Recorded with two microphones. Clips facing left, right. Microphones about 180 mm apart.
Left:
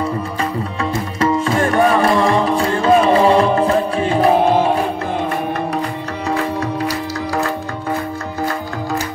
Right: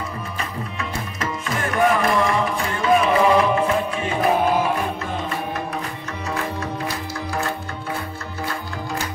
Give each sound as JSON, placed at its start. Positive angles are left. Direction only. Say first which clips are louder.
{"t": 1.2, "sound": "music", "louder": "left 11 dB", "side_deg": 30}